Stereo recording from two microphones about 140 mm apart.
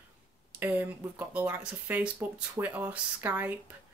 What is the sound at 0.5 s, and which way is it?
Speech, 10° right (ahead or behind).